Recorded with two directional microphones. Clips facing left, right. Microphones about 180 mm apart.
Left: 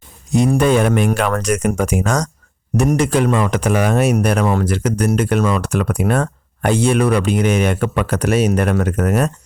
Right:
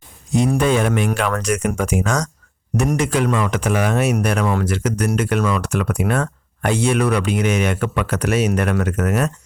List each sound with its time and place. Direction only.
0.4 s a man's voice: 45° left (ahead or behind)